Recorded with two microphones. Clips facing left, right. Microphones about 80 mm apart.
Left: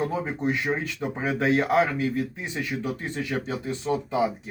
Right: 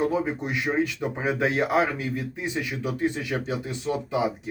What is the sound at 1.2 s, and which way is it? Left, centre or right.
Speech, centre.